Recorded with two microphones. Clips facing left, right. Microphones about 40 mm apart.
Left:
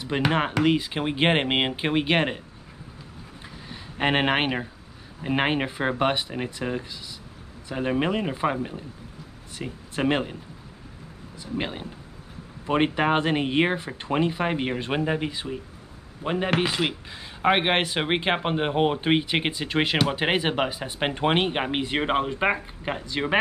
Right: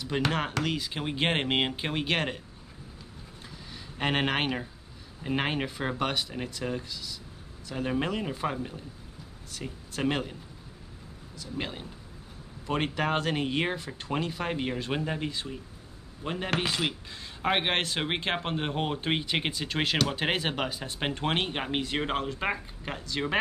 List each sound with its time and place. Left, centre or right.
0.0 s speech: left
3.6 s speech: left
11.5 s speech: left